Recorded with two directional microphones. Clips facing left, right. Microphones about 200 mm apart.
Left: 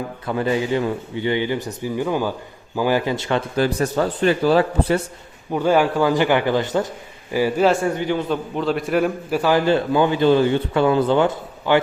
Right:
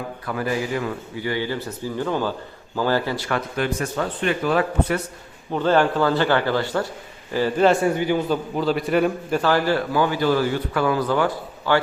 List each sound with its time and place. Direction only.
0.3 s a man's voice: 25° left (ahead or behind)
5.5 s a man's voice: 10° left (ahead or behind)
7.9 s a man's voice: 5° right (ahead or behind)
9.4 s a man's voice: 15° left (ahead or behind)